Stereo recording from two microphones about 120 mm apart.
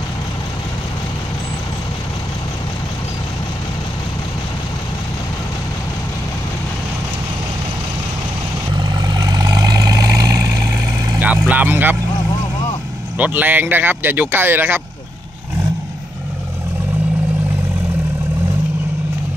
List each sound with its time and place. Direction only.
8.7 s vehicle: 35° right (ahead or behind)
11.1 s vehicle: 15° right (ahead or behind)
13.2 s speech: 15° right (ahead or behind)